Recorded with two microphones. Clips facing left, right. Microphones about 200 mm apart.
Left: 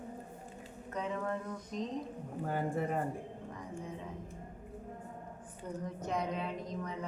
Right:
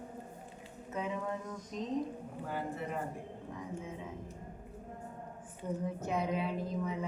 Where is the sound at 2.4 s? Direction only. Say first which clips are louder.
Left 4 dB; 45° left (ahead or behind).